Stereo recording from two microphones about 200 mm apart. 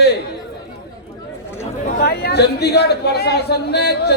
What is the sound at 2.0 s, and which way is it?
Speech, 55° left (ahead or behind).